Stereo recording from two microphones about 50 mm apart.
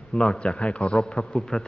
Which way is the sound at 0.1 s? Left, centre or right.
Centre.